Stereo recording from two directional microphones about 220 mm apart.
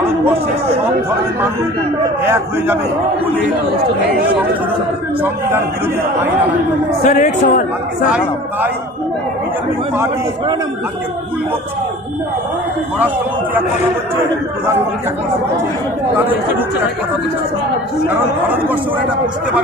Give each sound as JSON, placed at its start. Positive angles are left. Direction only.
{"t": 2.2, "sound": "speech", "side_deg": -10}
{"t": 7.0, "sound": "a woman's voice", "side_deg": 35}
{"t": 18.0, "sound": "speech", "side_deg": -10}